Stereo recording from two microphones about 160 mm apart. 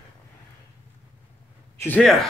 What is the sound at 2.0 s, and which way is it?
Speech, centre (ahead or behind).